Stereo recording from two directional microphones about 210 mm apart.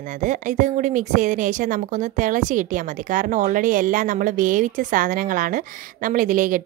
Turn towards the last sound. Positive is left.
turn(degrees=-40)  # may be behind; listen again after turning